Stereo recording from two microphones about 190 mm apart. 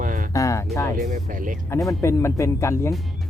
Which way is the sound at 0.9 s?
45° right (ahead or behind).